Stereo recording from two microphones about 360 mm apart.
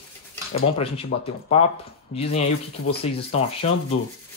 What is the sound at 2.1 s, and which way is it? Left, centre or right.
Speech, centre.